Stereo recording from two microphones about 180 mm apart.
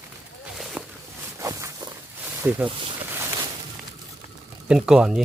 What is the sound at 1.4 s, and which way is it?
Walk, 15° right (ahead or behind).